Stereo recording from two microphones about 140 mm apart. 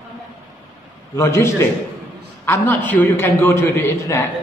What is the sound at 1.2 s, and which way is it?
A man's voice, 20° left (ahead or behind).